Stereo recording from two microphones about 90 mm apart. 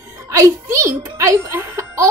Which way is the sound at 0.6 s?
30° right (ahead or behind).